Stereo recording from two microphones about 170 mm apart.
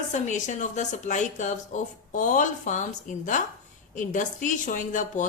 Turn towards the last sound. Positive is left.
turn(degrees=50)  # may be behind; listen again after turning